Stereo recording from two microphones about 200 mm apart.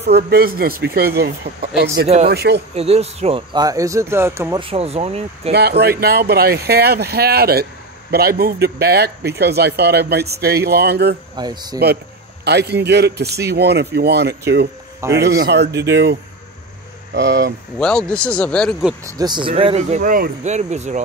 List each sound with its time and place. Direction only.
0.0 s speech: 50° right (ahead or behind)
2.7 s speech: 30° right (ahead or behind); by 4.6 s 15° right (ahead or behind)
4.6 s speech: 30° right (ahead or behind)
5.5 s speech: 55° right (ahead or behind)
11.3 s speech: 20° right (ahead or behind)
12.4 s speech: 55° right (ahead or behind)
17.7 s speech: 5° left (ahead or behind)
19.0 s speech: 20° right (ahead or behind)
20.0 s speech: 40° right (ahead or behind)